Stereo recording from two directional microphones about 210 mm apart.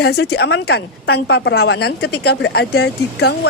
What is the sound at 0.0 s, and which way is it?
A woman's voice, 50° left (ahead or behind).